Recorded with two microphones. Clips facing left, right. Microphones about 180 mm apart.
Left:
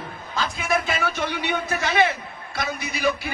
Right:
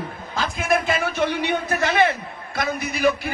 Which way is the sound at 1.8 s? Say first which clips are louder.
Right 2 dB; 55° right (ahead or behind).